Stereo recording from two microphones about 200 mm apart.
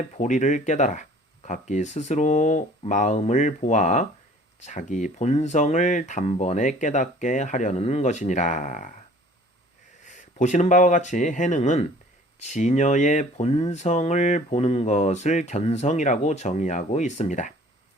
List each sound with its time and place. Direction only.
0.2 s speech: 35° left (ahead or behind)
10.1 s speech: 40° left (ahead or behind)